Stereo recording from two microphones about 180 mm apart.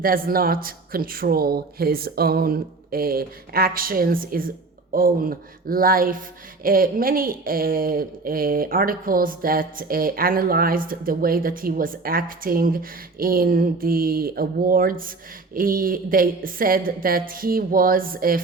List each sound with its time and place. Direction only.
0.0 s speech: 55° right (ahead or behind)